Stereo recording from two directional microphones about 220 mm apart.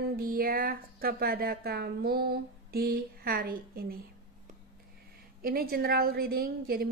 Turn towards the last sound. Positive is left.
turn(degrees=-45)  # may be behind; listen again after turning